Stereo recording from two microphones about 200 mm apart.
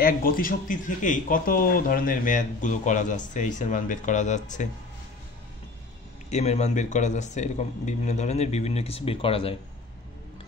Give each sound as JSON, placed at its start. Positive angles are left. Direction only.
{"t": 0.0, "sound": "speech", "side_deg": 45}
{"t": 6.3, "sound": "speech", "side_deg": 35}